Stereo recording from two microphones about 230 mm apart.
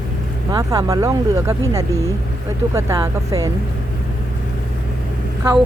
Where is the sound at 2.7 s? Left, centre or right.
Centre.